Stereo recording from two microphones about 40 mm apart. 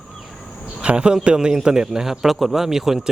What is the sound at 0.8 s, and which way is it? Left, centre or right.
A man's voice, right.